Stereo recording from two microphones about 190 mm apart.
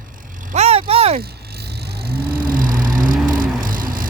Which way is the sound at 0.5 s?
35° right (ahead or behind).